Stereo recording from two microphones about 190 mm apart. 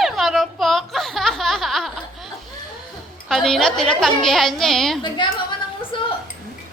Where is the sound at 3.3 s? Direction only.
Centre (ahead or behind).